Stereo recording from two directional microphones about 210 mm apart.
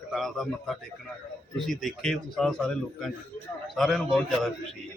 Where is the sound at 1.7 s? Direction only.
Centre (ahead or behind).